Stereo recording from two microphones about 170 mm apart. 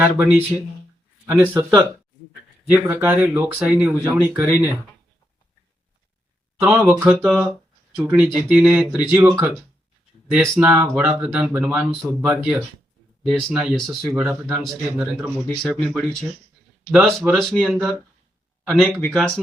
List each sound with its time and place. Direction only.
0.0 s speech: 10° right (ahead or behind)
1.5 s speech: 10° right (ahead or behind)
6.6 s speech: 10° right (ahead or behind)
9.2 s speech: 15° right (ahead or behind)
10.3 s speech: centre (ahead or behind)